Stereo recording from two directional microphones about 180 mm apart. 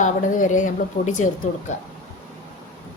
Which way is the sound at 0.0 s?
45° left (ahead or behind).